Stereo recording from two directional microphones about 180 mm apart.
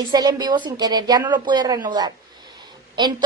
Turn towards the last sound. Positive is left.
turn(degrees=-25)  # may be behind; listen again after turning